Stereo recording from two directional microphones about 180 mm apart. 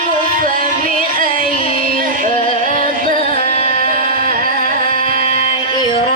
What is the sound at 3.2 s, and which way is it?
Music, 35° left (ahead or behind).